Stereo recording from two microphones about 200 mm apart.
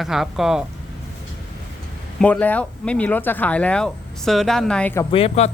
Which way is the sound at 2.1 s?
5° left (ahead or behind).